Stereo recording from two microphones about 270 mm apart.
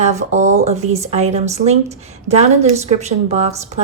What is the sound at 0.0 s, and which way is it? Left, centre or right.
A woman's voice, right.